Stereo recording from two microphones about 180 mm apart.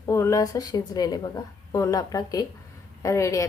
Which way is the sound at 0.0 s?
15° left (ahead or behind).